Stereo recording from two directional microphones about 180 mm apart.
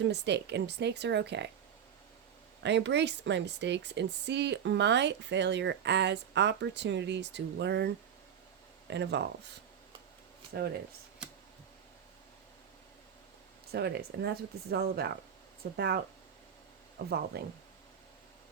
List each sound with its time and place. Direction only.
0.0 s speech: 70° right (ahead or behind)
2.6 s speech: 75° right (ahead or behind)
10.5 s speech: 70° right (ahead or behind)
13.7 s speech: 65° right (ahead or behind)
17.3 s speech: 65° right (ahead or behind)